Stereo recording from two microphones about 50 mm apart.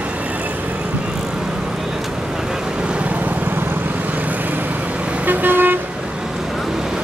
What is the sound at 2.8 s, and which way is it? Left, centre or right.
Vehicle, right.